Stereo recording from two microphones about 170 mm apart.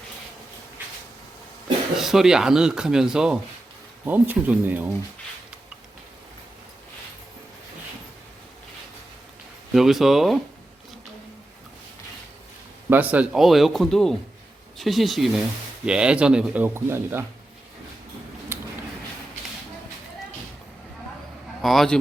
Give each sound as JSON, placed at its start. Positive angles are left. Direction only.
{"t": 2.0, "sound": "speech", "side_deg": 0}
{"t": 9.7, "sound": "speech", "side_deg": 0}
{"t": 12.9, "sound": "speech", "side_deg": -10}
{"t": 18.5, "sound": "a sound", "side_deg": -15}
{"t": 21.6, "sound": "speech", "side_deg": 0}